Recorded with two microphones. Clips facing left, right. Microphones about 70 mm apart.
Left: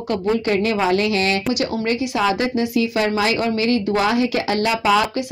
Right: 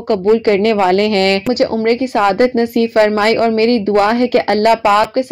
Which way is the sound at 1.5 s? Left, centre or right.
Right.